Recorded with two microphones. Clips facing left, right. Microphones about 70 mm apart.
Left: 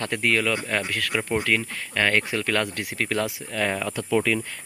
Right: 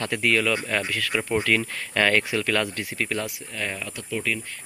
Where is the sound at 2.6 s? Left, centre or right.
Left.